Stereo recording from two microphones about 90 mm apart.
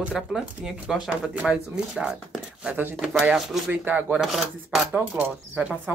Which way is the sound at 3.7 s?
15° right (ahead or behind).